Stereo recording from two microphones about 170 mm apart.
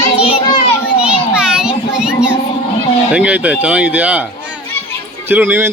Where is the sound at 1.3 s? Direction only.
5° right (ahead or behind).